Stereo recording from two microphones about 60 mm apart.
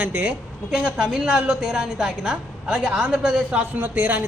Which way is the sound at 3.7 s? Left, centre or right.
Right.